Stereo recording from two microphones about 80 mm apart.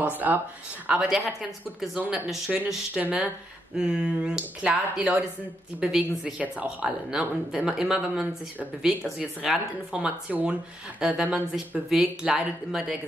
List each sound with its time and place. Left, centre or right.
0.2 s speech: centre
2.5 s speech: centre